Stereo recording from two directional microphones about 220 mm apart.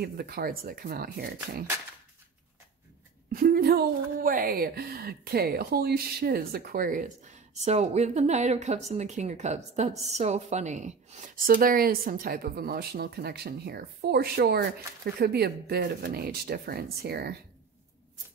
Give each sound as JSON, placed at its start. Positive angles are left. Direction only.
{"t": 0.0, "sound": "speech", "side_deg": -45}
{"t": 3.3, "sound": "speech", "side_deg": -40}